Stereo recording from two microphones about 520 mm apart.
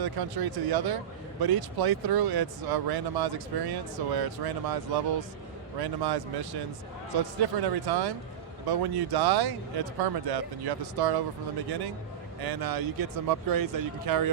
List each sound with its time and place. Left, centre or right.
0.0 s speech: right
7.6 s speech: right
12.4 s speech: right